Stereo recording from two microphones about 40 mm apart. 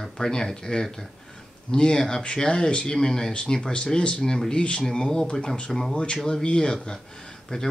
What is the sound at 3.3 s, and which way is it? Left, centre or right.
Speech, left.